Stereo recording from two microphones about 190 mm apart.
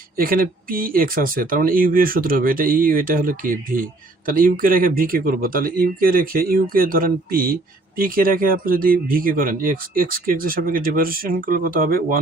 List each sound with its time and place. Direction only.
0.2 s speech: 50° right (ahead or behind)